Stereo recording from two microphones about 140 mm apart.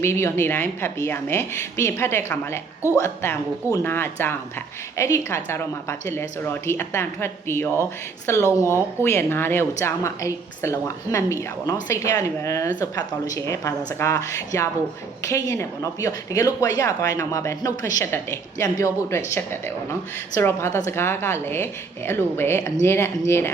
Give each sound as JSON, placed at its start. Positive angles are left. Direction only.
{"t": 0.0, "sound": "a woman's voice", "side_deg": 20}